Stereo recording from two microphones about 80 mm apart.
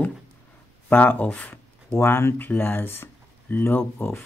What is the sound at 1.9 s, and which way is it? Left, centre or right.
Speech, left.